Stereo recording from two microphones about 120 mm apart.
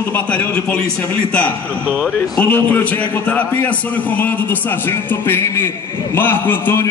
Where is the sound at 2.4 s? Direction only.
15° left (ahead or behind).